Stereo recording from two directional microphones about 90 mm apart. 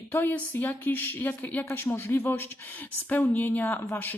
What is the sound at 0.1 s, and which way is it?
Speech, 25° left (ahead or behind).